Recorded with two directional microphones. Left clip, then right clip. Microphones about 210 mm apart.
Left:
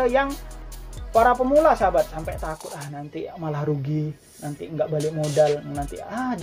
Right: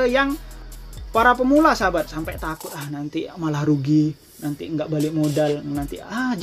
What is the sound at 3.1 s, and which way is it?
Speech, 45° right (ahead or behind).